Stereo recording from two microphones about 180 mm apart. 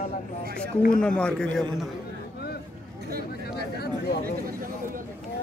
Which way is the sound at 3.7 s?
65° left (ahead or behind).